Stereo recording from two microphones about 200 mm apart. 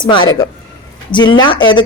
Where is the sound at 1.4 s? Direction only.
25° left (ahead or behind).